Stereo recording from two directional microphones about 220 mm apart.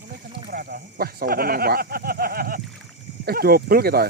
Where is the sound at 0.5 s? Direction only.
45° right (ahead or behind).